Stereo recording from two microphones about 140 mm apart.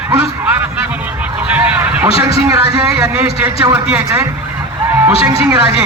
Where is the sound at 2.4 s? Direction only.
25° right (ahead or behind).